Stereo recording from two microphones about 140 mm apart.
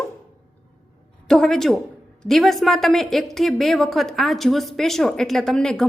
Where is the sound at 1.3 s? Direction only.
5° left (ahead or behind).